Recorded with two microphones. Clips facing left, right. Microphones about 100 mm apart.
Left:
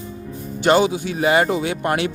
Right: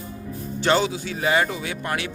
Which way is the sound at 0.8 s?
15° left (ahead or behind).